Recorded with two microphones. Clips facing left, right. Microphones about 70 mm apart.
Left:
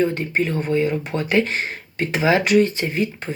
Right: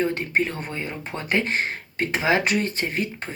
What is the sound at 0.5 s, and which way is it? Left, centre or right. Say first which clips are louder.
Speech: left 11 dB; right.